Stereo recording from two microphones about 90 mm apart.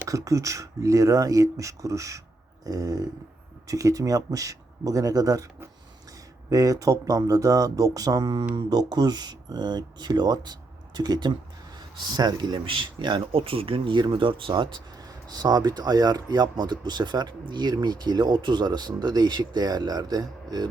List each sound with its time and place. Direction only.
0.1 s speech: 35° right (ahead or behind)
6.5 s speech: 40° right (ahead or behind); by 14.8 s 65° right (ahead or behind)
14.9 s speech: 45° right (ahead or behind)